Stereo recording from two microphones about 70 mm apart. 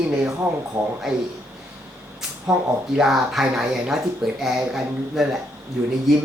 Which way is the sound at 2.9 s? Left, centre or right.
Centre.